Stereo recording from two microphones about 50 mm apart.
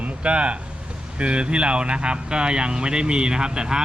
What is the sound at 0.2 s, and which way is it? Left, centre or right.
Speech, right.